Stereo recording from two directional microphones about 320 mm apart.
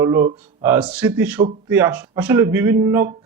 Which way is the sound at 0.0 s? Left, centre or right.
Centre.